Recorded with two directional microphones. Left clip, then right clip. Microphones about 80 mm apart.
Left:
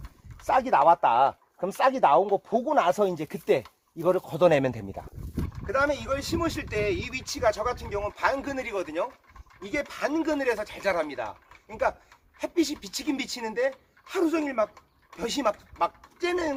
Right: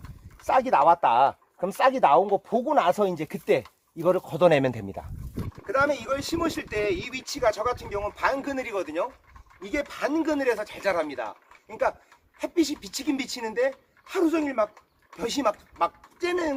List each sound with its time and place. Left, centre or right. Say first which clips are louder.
0.4 s speech: right 1 dB; right
5.6 s speech: right 2 dB; centre